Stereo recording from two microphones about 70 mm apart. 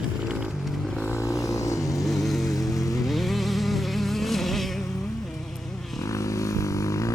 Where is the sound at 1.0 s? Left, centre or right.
Left.